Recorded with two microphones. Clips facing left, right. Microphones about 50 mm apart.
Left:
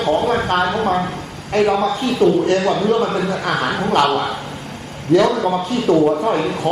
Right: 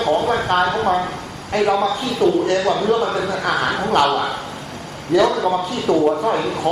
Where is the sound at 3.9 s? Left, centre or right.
Left.